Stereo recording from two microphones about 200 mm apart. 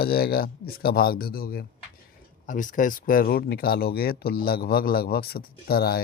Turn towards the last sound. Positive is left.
turn(degrees=50)  # may be behind; listen again after turning